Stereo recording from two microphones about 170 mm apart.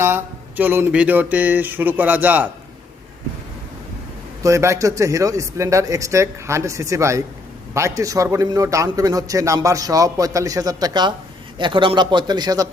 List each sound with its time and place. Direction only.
0.0 s speech: 15° right (ahead or behind)
4.4 s a man's voice: 15° right (ahead or behind)